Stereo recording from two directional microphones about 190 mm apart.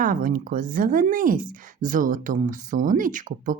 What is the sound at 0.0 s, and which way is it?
Speech, 45° right (ahead or behind).